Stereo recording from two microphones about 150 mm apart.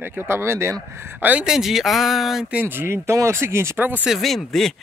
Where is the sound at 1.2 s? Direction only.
5° right (ahead or behind).